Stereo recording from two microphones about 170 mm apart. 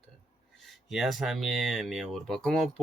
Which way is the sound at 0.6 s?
Centre (ahead or behind).